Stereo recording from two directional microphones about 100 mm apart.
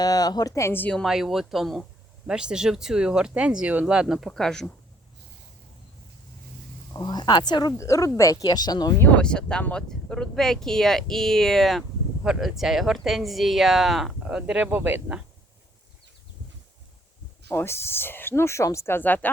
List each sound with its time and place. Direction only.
0.0 s speech: 40° left (ahead or behind)
1.0 s speech: 5° right (ahead or behind)
6.9 s speech: 45° left (ahead or behind)
7.8 s speech: 30° left (ahead or behind)
9.0 s speech: 10° left (ahead or behind); by 15.2 s 20° right (ahead or behind)
17.5 s speech: 25° left (ahead or behind)